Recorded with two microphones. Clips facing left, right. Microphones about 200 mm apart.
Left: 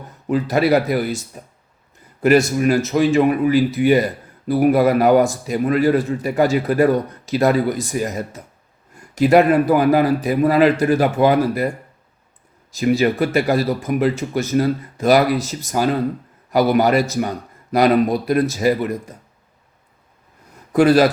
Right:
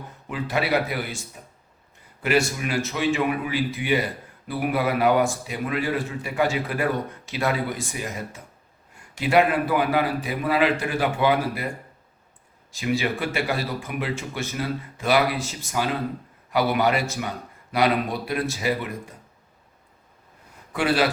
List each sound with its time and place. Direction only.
0.3 s speech: 40° left (ahead or behind)
2.2 s speech: 45° left (ahead or behind)
12.7 s speech: 40° left (ahead or behind)
20.7 s speech: 40° left (ahead or behind)